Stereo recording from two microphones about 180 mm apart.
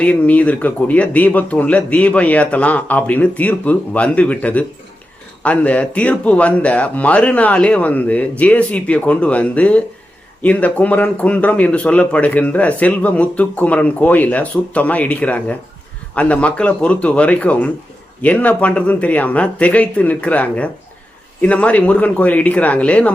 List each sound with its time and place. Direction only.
0.0 s speech: 10° left (ahead or behind)